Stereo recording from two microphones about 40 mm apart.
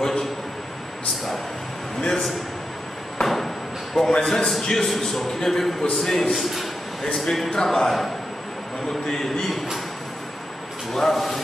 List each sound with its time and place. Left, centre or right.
0.0 s a man's voice: centre
2.0 s a man's voice: centre
3.2 s a sound: centre
4.1 s a man's voice: left
4.6 s a man's voice: centre
6.3 s a sound: centre
7.2 s a man's voice: centre
10.9 s speech: centre